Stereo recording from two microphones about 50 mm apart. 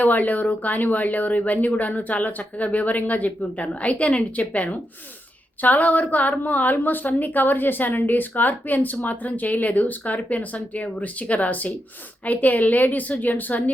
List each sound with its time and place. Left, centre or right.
0.0 s speech: left